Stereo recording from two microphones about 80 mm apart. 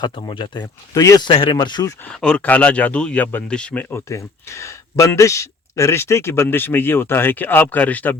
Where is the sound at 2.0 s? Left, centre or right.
Centre.